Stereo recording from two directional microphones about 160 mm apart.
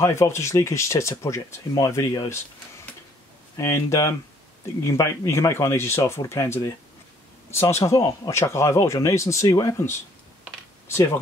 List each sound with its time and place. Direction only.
0.0 s speech: 15° left (ahead or behind)
3.5 s speech: 15° left (ahead or behind)